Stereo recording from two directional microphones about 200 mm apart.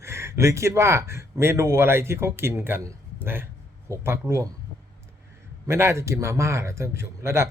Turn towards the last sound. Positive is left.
turn(degrees=-15)  # may be behind; listen again after turning